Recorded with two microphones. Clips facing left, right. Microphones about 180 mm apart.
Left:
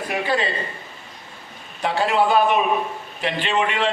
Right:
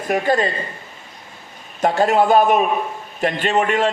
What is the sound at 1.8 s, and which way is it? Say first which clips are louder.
A man's voice: right 4 dB; 45° right (ahead or behind).